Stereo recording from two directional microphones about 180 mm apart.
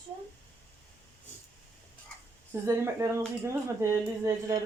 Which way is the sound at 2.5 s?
15° right (ahead or behind).